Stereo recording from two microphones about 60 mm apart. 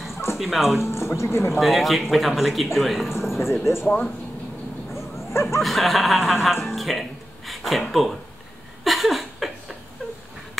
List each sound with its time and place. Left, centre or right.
0.4 s speech: centre
0.8 s speech: left
1.5 s speech: centre
3.2 s a sound: centre
3.8 s speech: left
4.9 s bow-wow: left
5.6 s speech: centre
8.8 s a sound: centre